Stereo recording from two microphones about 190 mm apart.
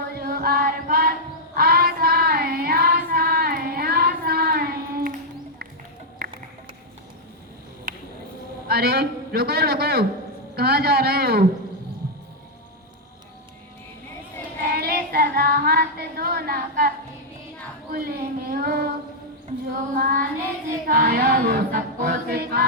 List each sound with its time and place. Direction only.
0.1 s music: 55° right (ahead or behind)
1.5 s child singing: 50° right (ahead or behind)
6.2 s music: 50° right (ahead or behind)
8.6 s a man's voice: 55° right (ahead or behind)
10.5 s choir: 55° right (ahead or behind)
14.6 s child singing: 55° right (ahead or behind)
17.9 s child singing: 50° right (ahead or behind)
19.9 s child singing: 50° right (ahead or behind)
20.8 s choir: 50° right (ahead or behind)